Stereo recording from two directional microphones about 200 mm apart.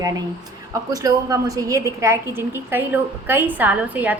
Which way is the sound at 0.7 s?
15° right (ahead or behind).